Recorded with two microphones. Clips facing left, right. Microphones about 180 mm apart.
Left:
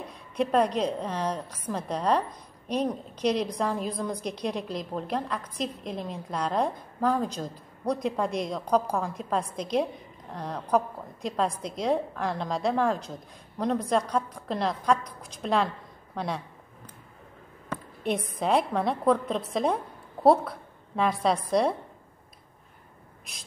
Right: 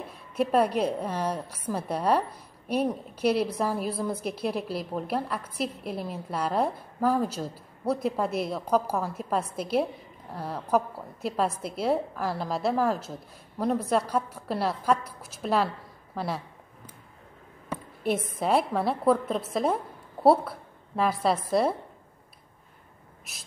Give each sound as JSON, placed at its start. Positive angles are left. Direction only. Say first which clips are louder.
{"t": 0.1, "sound": "a woman's voice", "louder": "right 1 dB", "side_deg": -5}
{"t": 16.2, "sound": "a sound", "louder": "even", "side_deg": -5}
{"t": 17.6, "sound": "a woman's voice", "louder": "right 1 dB", "side_deg": -5}
{"t": 23.3, "sound": "a woman's voice", "louder": "left 1 dB", "side_deg": -5}